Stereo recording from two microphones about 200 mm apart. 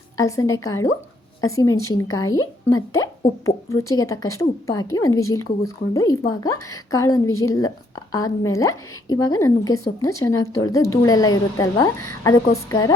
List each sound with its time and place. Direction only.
0.2 s a woman's voice: 15° left (ahead or behind)